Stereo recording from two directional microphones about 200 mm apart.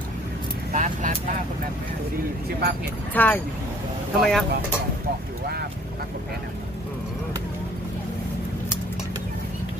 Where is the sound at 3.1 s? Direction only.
10° left (ahead or behind).